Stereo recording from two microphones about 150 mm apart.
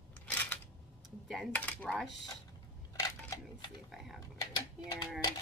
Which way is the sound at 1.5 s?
10° left (ahead or behind).